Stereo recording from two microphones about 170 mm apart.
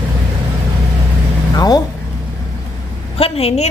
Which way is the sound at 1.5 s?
20° left (ahead or behind).